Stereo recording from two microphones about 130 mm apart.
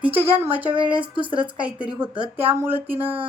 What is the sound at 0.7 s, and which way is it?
Speech, 40° right (ahead or behind).